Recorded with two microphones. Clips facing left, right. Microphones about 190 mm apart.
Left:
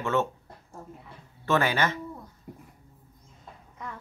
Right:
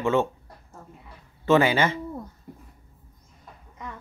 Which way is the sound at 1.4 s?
15° right (ahead or behind).